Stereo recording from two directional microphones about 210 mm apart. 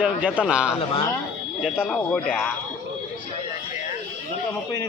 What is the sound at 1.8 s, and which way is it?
Speech, 5° left (ahead or behind).